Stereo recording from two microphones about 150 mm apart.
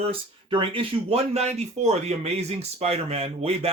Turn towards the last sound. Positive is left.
turn(degrees=-40)  # may be behind; listen again after turning